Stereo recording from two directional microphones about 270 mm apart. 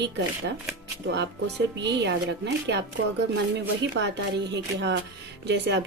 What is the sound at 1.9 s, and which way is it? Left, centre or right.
Speech, right.